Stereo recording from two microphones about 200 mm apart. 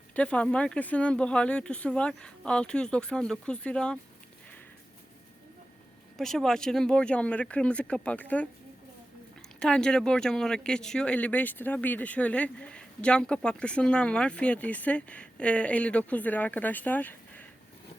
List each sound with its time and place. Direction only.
0.1 s speech: 5° left (ahead or behind)
6.1 s speech: centre (ahead or behind)
9.6 s speech: 5° left (ahead or behind)